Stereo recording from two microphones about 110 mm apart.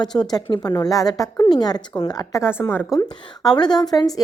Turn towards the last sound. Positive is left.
turn(degrees=35)  # may be behind; listen again after turning